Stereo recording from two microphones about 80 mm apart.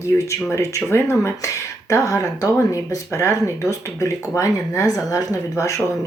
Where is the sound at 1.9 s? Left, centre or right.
Left.